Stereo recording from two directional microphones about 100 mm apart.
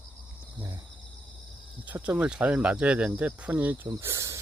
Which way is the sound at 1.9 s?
15° right (ahead or behind).